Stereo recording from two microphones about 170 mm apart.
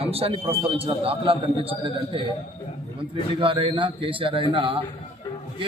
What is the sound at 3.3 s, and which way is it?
A man's voice, 30° right (ahead or behind).